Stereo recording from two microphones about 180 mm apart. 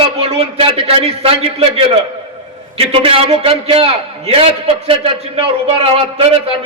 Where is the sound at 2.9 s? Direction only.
30° right (ahead or behind).